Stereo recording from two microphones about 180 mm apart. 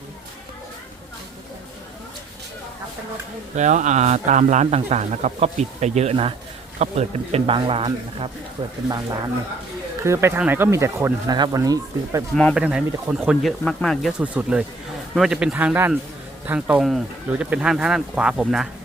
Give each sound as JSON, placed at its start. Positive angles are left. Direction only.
{"t": 3.5, "sound": "a man's voice", "side_deg": -45}
{"t": 8.9, "sound": "speech", "side_deg": -20}
{"t": 12.3, "sound": "speech", "side_deg": 5}
{"t": 12.5, "sound": "speech", "side_deg": -5}